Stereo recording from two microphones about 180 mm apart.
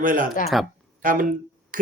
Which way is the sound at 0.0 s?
50° right (ahead or behind).